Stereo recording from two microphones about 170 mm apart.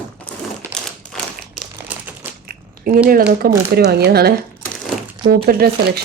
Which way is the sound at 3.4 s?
70° right (ahead or behind).